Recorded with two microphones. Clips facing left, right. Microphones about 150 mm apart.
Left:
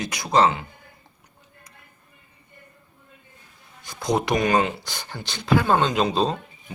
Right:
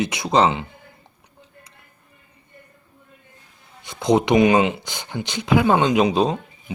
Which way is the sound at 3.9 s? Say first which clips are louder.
Right 6 dB; 25° right (ahead or behind).